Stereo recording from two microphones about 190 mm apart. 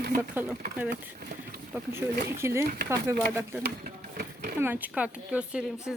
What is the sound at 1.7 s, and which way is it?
Speech, 15° right (ahead or behind).